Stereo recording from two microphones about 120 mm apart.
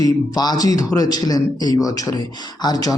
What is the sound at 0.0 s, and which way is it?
A man's voice, 30° left (ahead or behind).